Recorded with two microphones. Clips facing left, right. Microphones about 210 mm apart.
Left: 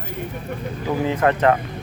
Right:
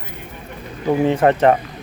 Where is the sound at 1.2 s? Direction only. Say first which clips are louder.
Right 2 dB; 25° right (ahead or behind).